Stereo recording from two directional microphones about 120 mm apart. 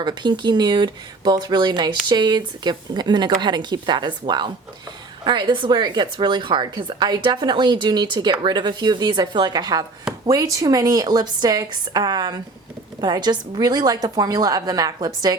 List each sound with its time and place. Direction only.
0.0 s speech: 40° right (ahead or behind)